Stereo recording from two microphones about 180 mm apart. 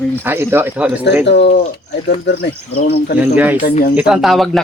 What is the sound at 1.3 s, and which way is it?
Speech, 70° left (ahead or behind).